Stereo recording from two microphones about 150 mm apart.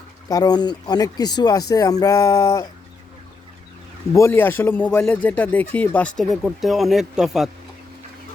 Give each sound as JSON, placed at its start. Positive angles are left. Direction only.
{"t": 0.3, "sound": "speech", "side_deg": 25}
{"t": 4.1, "sound": "speech", "side_deg": 15}